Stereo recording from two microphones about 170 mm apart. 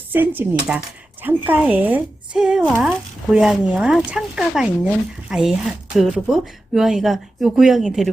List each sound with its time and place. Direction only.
0.1 s a woman's voice: 10° right (ahead or behind)